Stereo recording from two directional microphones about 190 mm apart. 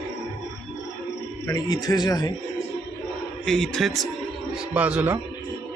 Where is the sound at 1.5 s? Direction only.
20° left (ahead or behind).